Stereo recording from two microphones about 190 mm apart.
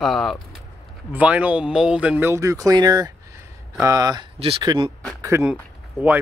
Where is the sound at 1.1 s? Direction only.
5° right (ahead or behind).